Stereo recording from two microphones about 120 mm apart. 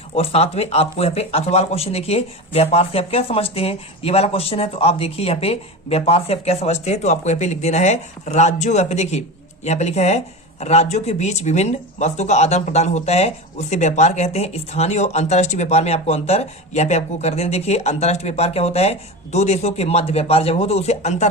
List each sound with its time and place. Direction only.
0.1 s speech: 55° left (ahead or behind)